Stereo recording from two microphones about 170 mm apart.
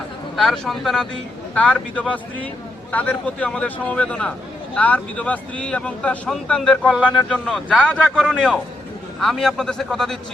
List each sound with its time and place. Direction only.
0.3 s a man's voice: centre (ahead or behind)